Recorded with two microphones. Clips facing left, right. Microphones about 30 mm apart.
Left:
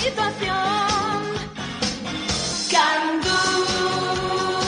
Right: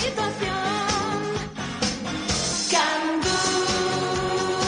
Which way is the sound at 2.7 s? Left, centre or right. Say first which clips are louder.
Left 4 dB; centre.